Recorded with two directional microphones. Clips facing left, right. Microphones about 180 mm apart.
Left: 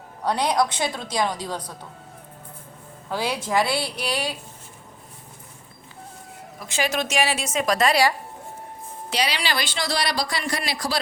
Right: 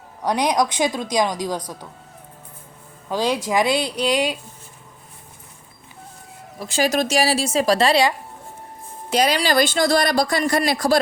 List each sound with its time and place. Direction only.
0.3 s a woman's voice: 15° right (ahead or behind)
3.1 s a woman's voice: 15° right (ahead or behind)
6.6 s a woman's voice: 35° right (ahead or behind)
9.0 s speech: 45° right (ahead or behind)